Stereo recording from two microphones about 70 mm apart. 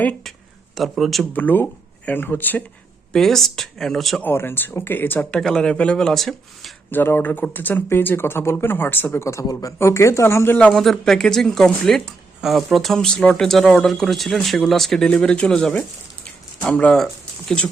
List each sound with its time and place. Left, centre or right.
0.8 s speech: centre
1.3 s speech: left
3.1 s speech: centre
4.2 s speech: left
5.3 s speech: centre
6.9 s speech: left
9.1 s speech: left
9.5 s speech: left
9.7 s speech: left
10.7 s speech: centre
12.4 s speech: centre